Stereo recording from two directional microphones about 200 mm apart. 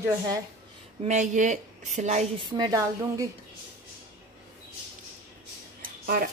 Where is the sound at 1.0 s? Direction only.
35° right (ahead or behind).